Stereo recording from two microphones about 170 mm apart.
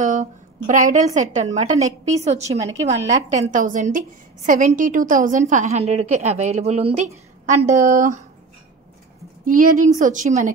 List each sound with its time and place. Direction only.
0.0 s a woman's voice: 45° right (ahead or behind)
9.4 s a woman's voice: 50° right (ahead or behind)